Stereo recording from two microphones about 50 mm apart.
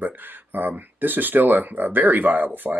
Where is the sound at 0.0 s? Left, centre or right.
Right.